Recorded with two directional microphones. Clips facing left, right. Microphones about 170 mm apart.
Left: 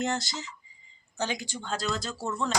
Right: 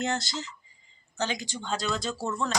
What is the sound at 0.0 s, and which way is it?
Speech, 15° left (ahead or behind).